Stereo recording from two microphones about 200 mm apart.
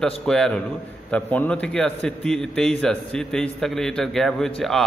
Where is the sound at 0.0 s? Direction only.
5° left (ahead or behind).